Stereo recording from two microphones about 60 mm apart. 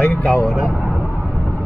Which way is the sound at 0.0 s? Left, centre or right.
Centre.